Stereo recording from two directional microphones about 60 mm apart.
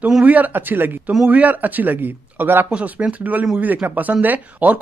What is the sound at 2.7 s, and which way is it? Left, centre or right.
Speech, right.